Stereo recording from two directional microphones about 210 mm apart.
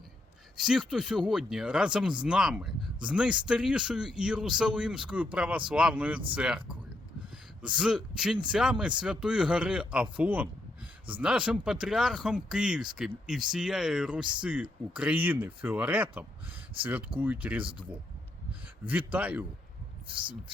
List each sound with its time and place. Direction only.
0.5 s a man's voice: 5° right (ahead or behind)
17.6 s speech: 25° right (ahead or behind)
18.9 s a man's voice: 10° right (ahead or behind)